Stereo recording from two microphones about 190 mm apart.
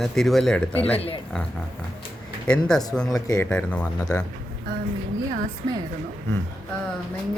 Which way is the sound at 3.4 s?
5° left (ahead or behind).